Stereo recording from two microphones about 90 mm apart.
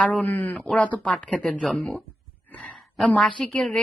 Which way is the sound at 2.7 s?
Centre (ahead or behind).